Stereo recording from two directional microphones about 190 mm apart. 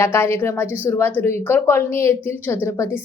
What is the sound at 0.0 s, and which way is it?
A child's voice, 10° left (ahead or behind).